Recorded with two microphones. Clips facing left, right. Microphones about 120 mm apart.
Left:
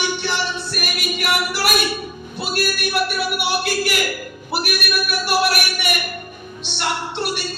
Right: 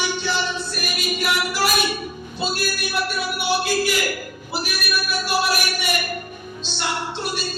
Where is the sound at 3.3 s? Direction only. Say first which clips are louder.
Right 3 dB; 65° left (ahead or behind).